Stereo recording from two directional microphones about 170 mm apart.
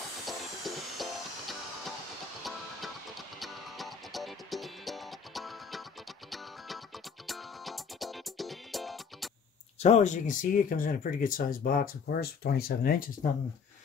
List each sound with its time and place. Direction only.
0.3 s music: centre (ahead or behind)
7.2 s music: centre (ahead or behind)
9.8 s speech: 40° left (ahead or behind); by 13.3 s 60° left (ahead or behind)